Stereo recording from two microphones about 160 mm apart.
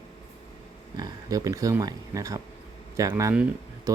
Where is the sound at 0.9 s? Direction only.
25° right (ahead or behind).